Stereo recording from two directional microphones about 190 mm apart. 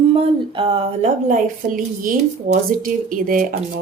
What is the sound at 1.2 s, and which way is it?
A woman's voice, 45° right (ahead or behind).